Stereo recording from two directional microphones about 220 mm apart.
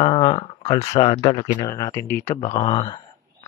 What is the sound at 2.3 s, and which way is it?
Speech, 30° left (ahead or behind).